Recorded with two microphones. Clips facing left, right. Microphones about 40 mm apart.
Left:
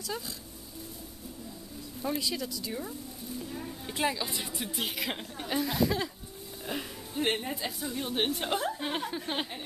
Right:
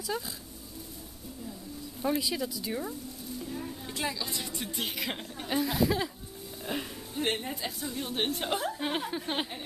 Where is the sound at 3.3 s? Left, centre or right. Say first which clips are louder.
Right 1 dB; centre.